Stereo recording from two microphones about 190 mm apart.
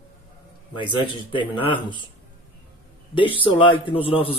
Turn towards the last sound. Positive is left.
turn(degrees=30)  # may be behind; listen again after turning